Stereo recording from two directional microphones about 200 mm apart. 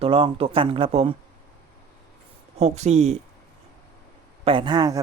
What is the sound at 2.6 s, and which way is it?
Speech, 35° right (ahead or behind).